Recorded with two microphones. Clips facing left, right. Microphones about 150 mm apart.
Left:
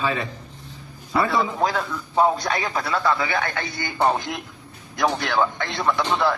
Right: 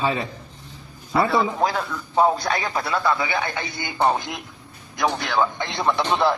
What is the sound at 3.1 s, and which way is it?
A man's voice, 10° right (ahead or behind).